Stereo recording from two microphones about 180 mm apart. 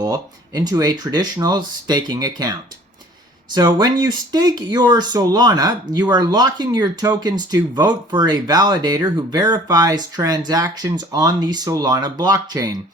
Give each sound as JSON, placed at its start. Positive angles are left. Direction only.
{"t": 0.0, "sound": "speech", "side_deg": -20}